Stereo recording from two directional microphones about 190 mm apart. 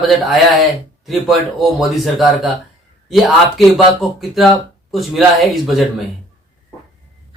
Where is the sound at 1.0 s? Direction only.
Centre (ahead or behind).